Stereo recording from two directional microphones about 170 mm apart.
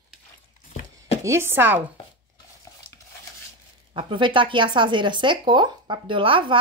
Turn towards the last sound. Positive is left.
turn(degrees=-30)  # may be behind; listen again after turning